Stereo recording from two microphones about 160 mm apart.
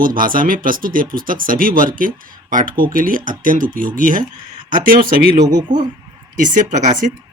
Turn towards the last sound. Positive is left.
turn(degrees=-50)  # may be behind; listen again after turning